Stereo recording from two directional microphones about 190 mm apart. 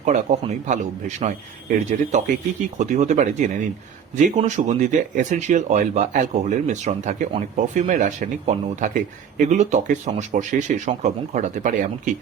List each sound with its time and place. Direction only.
0.0 s speech: 35° right (ahead or behind)